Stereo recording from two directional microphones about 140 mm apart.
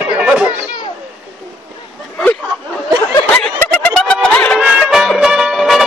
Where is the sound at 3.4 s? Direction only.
5° left (ahead or behind).